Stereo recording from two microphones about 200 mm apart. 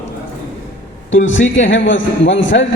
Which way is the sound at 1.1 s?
70° left (ahead or behind).